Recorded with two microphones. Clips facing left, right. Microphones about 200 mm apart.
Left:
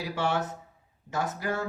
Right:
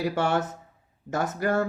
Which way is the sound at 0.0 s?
50° right (ahead or behind).